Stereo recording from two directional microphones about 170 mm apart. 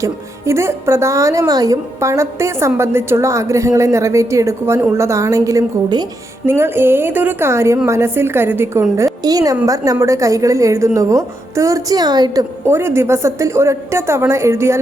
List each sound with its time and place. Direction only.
0.0 s a woman's voice: 15° right (ahead or behind)